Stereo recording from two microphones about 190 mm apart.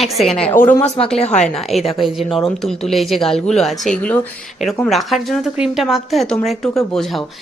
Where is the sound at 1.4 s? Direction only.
Centre (ahead or behind).